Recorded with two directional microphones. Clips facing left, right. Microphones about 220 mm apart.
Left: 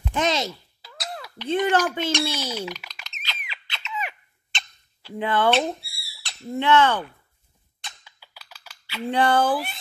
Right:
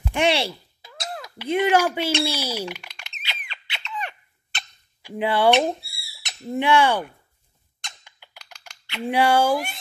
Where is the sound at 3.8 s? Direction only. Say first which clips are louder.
Even; 5° left (ahead or behind).